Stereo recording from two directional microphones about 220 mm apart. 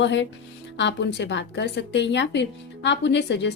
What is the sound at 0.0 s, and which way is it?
A woman's voice, 55° left (ahead or behind).